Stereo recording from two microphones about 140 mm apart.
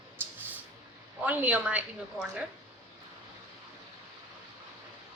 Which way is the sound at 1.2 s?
10° right (ahead or behind).